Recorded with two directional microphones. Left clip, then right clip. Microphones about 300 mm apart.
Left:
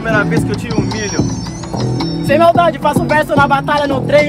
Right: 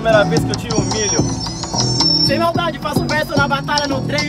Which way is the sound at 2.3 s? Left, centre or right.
Centre.